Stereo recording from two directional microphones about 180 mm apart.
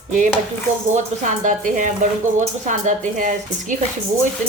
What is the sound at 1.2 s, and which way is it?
Speech, 45° right (ahead or behind).